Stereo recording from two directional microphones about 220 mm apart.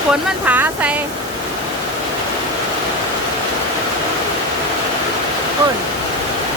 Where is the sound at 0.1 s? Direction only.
5° right (ahead or behind).